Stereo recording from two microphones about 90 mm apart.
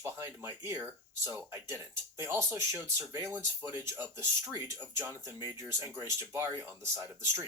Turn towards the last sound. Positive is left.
turn(degrees=-30)  # may be behind; listen again after turning